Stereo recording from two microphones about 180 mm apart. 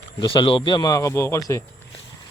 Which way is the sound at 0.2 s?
30° left (ahead or behind).